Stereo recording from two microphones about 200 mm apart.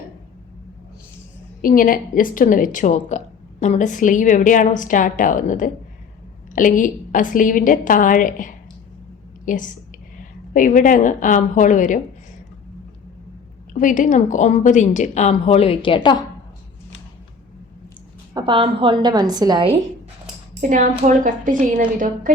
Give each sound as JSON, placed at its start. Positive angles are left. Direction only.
{"t": 1.6, "sound": "a woman's voice", "side_deg": 45}
{"t": 13.7, "sound": "a woman's voice", "side_deg": 40}
{"t": 18.3, "sound": "a woman's voice", "side_deg": -25}
{"t": 20.5, "sound": "a woman's voice", "side_deg": -40}